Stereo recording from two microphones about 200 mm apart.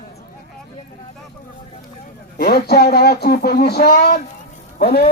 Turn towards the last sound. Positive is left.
turn(degrees=50)  # may be behind; listen again after turning